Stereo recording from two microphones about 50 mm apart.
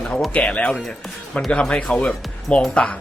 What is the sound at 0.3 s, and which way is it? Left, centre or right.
Speech, left.